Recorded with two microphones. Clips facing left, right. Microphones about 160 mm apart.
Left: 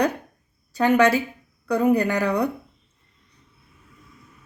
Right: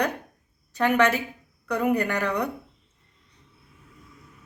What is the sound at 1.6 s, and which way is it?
Speech, 30° left (ahead or behind).